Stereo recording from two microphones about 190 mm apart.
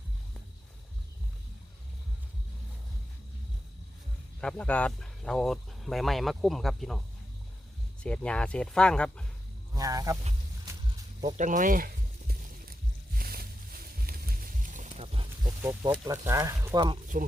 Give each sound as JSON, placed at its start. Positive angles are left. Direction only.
{"t": 4.4, "sound": "speech", "side_deg": 5}
{"t": 8.0, "sound": "speech", "side_deg": 5}
{"t": 9.7, "sound": "speech", "side_deg": -20}
{"t": 11.3, "sound": "a sound", "side_deg": -40}
{"t": 13.1, "sound": "music", "side_deg": -50}
{"t": 15.6, "sound": "speech", "side_deg": -20}